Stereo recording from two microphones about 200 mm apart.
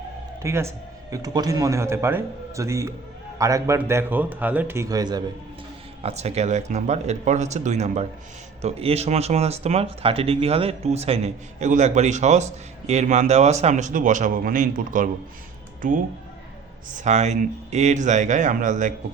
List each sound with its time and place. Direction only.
0.4 s a man's voice: 15° right (ahead or behind)
6.0 s speech: 30° right (ahead or behind)
16.9 s speech: 35° right (ahead or behind)